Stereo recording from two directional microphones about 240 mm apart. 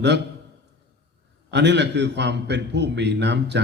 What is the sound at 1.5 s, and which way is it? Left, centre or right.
A man's voice, right.